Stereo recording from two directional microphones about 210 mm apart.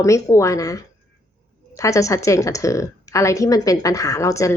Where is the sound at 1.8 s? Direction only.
15° left (ahead or behind).